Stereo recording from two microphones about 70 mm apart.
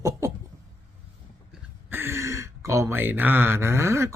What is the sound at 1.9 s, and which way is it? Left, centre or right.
Speech, right.